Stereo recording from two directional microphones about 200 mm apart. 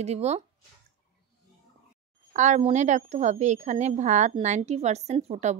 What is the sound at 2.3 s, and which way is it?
A woman's voice, 35° right (ahead or behind).